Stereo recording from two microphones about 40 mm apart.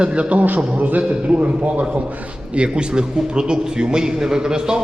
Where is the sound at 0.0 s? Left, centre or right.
Right.